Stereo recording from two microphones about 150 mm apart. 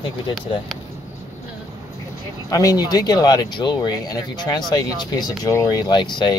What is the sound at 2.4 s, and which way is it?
Speech, 25° left (ahead or behind).